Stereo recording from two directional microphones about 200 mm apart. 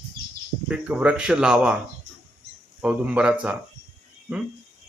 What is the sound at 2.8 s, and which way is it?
Speech, 5° right (ahead or behind).